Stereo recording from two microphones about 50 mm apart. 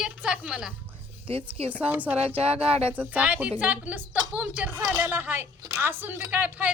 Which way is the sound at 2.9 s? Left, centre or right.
Right.